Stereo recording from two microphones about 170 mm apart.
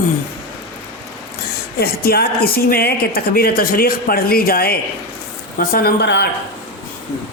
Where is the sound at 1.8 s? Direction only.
65° left (ahead or behind); by 6.2 s 85° left.